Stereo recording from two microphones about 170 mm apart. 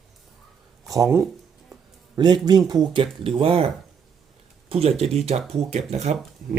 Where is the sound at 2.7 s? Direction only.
25° right (ahead or behind).